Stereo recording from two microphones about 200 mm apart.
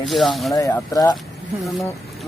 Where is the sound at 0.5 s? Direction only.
15° left (ahead or behind).